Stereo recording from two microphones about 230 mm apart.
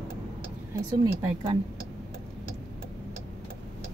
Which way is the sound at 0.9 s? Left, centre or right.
Centre.